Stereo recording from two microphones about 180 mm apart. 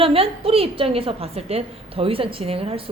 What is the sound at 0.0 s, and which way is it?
A woman's voice, 30° right (ahead or behind).